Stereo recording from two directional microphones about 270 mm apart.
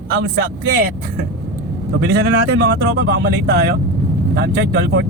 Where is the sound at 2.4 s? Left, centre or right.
Right.